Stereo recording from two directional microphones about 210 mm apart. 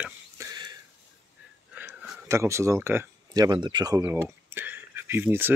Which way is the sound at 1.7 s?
5° right (ahead or behind).